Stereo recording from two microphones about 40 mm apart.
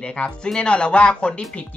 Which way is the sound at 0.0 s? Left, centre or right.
Left.